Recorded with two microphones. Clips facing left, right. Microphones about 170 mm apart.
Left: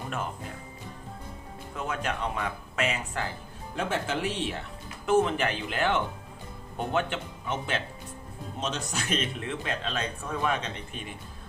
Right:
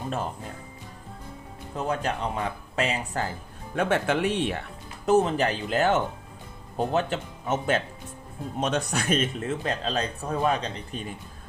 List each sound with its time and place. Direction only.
1.7 s a man's voice: 35° right (ahead or behind)
3.8 s speech: 60° right (ahead or behind)
5.0 s a man's voice: 40° right (ahead or behind)
8.6 s a man's voice: 60° right (ahead or behind); by 11.0 s 35° right (ahead or behind)